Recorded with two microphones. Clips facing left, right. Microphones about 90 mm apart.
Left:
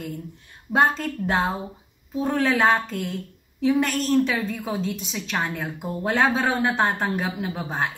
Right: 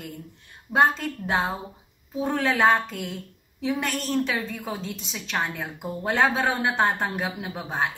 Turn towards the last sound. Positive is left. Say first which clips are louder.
# left 1 dB
turn(degrees=0)  # may be behind; listen again after turning